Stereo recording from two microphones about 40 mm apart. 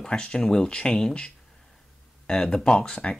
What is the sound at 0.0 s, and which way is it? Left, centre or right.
Speech, left.